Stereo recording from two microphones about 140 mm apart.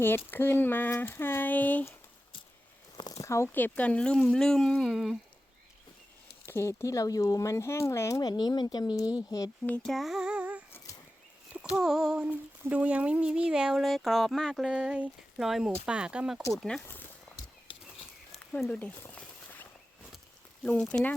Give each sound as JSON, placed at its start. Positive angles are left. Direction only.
{"t": 0.3, "sound": "speech", "side_deg": 15}
{"t": 3.0, "sound": "speech", "side_deg": 25}
{"t": 6.4, "sound": "speech", "side_deg": 20}
{"t": 9.6, "sound": "a sound", "side_deg": 5}
{"t": 10.7, "sound": "dog", "side_deg": 15}
{"t": 11.5, "sound": "a sound", "side_deg": -5}
{"t": 15.9, "sound": "speech", "side_deg": -5}
{"t": 16.5, "sound": "a sound", "side_deg": 0}
{"t": 16.8, "sound": "speech", "side_deg": 15}
{"t": 17.7, "sound": "a sound", "side_deg": 40}
{"t": 18.5, "sound": "speech", "side_deg": 10}
{"t": 20.7, "sound": "speech", "side_deg": 10}